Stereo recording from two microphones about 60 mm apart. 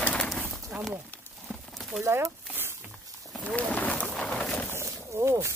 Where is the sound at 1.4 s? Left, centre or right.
Centre.